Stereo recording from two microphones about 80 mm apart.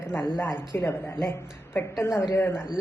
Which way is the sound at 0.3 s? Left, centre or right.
Left.